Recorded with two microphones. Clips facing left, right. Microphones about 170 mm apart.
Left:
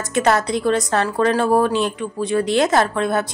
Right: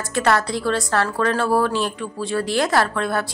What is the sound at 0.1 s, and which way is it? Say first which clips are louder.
A woman's voice: left 2 dB; 20° left (ahead or behind).